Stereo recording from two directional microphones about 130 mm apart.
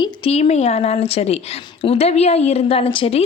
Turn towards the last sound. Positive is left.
turn(degrees=45)  # may be behind; listen again after turning